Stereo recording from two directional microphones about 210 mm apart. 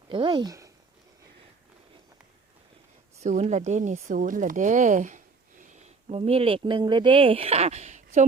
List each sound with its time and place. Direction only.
0.1 s speech: 20° right (ahead or behind)
3.2 s speech: 35° right (ahead or behind)